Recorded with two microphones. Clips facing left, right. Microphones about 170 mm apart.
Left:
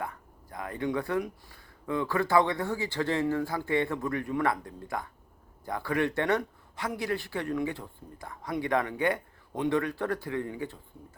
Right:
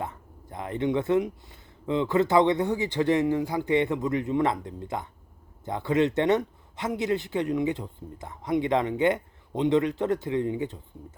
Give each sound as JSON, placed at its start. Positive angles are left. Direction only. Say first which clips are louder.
{"t": 0.0, "sound": "speech", "louder": "right 2 dB", "side_deg": -20}